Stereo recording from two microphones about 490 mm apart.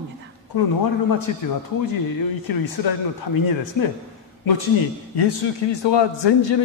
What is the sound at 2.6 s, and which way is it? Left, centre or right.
Speech, left.